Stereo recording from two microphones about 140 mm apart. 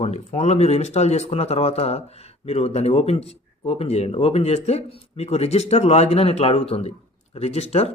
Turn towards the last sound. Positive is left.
turn(degrees=45)  # may be behind; listen again after turning